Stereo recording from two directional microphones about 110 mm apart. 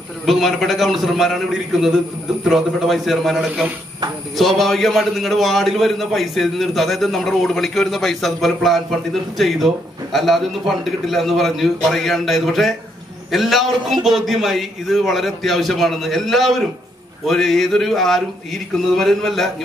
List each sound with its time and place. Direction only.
0.2 s a man's voice: centre (ahead or behind)